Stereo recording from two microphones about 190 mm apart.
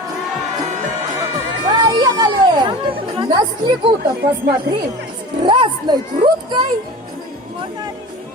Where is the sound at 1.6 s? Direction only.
20° right (ahead or behind).